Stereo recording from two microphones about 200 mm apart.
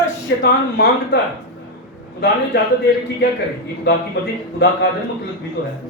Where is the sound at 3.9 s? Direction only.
55° left (ahead or behind).